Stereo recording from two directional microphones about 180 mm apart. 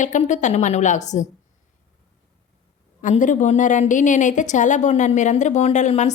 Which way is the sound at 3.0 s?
45° left (ahead or behind).